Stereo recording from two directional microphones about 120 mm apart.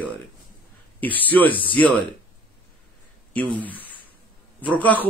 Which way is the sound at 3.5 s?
15° left (ahead or behind).